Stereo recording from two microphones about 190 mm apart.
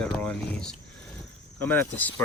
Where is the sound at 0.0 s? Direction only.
5° left (ahead or behind).